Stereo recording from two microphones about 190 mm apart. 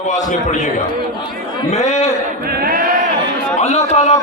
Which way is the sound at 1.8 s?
35° left (ahead or behind).